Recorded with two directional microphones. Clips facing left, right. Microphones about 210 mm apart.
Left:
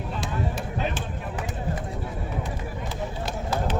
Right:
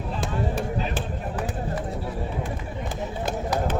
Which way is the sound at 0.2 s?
55° right (ahead or behind).